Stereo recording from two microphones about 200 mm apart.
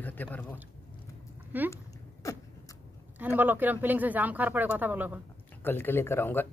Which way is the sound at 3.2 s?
10° right (ahead or behind).